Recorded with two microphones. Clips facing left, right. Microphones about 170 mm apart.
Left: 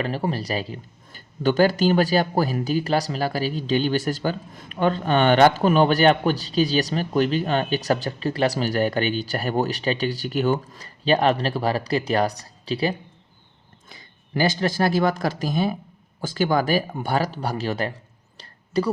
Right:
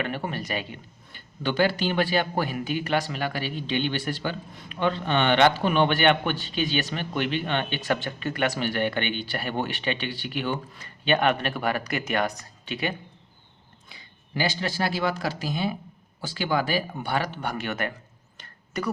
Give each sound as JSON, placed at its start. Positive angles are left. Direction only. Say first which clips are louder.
{"t": 0.0, "sound": "speech", "louder": "left 4 dB", "side_deg": 35}
{"t": 13.9, "sound": "speech", "louder": "left 5 dB", "side_deg": 45}
{"t": 18.3, "sound": "a sound", "louder": "left 9 dB", "side_deg": 30}